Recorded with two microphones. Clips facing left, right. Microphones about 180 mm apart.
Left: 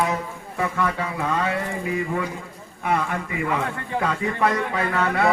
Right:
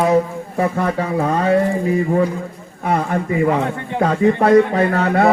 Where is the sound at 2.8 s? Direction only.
35° right (ahead or behind).